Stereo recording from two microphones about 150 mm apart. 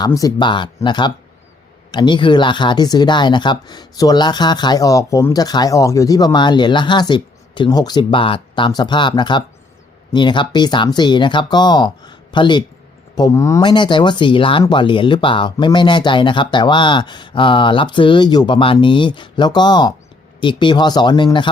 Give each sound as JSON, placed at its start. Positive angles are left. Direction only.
{"t": 0.0, "sound": "speech", "side_deg": 25}